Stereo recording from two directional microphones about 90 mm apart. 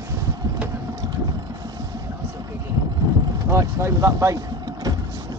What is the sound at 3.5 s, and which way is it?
Speech, 30° right (ahead or behind).